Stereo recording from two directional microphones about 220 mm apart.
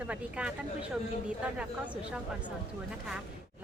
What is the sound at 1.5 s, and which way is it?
Speech, 5° right (ahead or behind).